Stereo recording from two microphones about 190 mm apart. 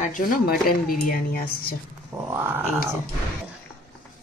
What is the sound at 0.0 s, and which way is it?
Speech, 45° left (ahead or behind).